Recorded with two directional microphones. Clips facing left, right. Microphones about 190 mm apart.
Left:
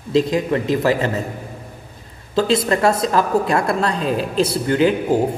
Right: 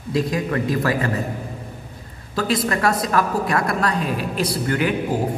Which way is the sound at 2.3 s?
25° left (ahead or behind).